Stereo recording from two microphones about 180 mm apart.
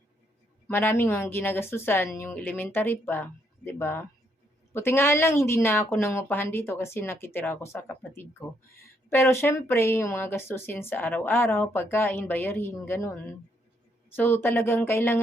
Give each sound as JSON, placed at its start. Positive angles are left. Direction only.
{"t": 0.7, "sound": "speech", "side_deg": 10}
{"t": 14.2, "sound": "speech", "side_deg": 10}